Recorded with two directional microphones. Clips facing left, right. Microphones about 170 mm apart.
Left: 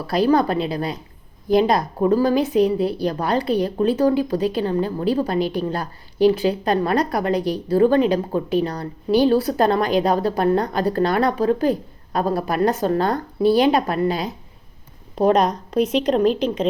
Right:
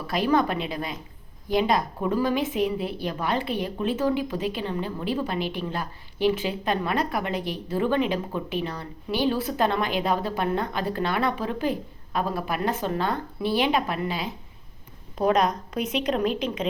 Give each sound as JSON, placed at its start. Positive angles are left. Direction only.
{"t": 0.1, "sound": "speech", "side_deg": 35}